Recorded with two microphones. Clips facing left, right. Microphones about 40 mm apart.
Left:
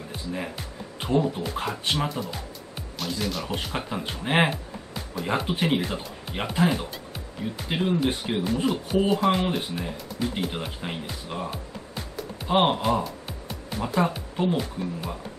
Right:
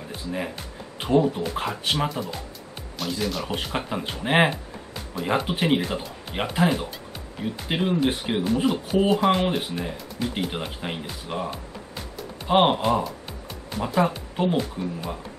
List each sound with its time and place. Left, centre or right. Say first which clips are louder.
0.9 s speech: right 3 dB; centre
3.4 s speech: right 2 dB; centre
6.7 s speech: right 2 dB; centre
7.6 s speech: right 1 dB; centre
8.6 s speech: right 1 dB; centre
14.3 s speech: right 2 dB; centre
14.6 s speech: right 2 dB; centre